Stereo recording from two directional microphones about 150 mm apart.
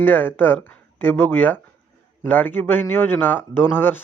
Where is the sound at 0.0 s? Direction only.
15° left (ahead or behind).